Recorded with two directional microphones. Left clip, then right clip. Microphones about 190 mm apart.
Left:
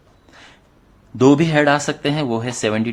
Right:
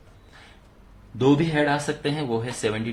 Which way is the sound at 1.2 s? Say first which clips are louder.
Left 7 dB; 45° left (ahead or behind).